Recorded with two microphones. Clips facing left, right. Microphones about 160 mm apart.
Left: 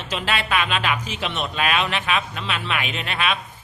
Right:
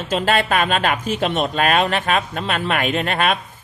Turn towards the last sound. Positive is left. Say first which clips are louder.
# right 6 dB
turn(degrees=-50)  # may be behind; listen again after turning